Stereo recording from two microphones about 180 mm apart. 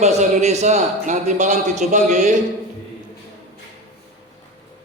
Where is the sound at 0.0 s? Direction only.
40° right (ahead or behind).